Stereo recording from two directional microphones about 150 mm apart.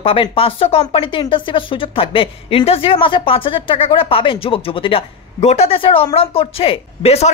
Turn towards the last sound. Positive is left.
turn(degrees=45)  # may be behind; listen again after turning